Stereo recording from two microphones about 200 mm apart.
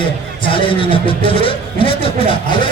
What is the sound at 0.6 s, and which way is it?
A man's voice, 25° left (ahead or behind).